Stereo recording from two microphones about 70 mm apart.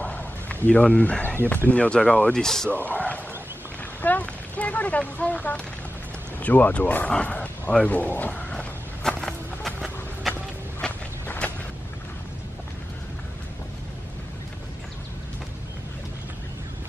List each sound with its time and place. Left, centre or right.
0.0 s a sound: left
0.7 s speech: left
1.7 s speech: centre
2.7 s speech: left
8.5 s walk: centre
11.2 s a sound: centre